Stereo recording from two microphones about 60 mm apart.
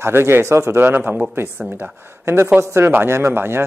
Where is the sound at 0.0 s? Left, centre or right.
Right.